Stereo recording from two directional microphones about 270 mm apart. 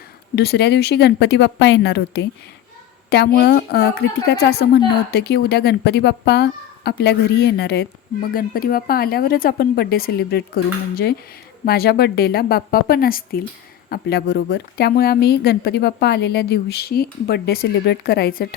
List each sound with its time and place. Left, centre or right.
0.3 s speech: left